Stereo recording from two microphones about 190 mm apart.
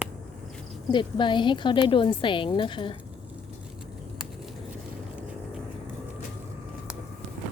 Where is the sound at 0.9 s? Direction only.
25° left (ahead or behind).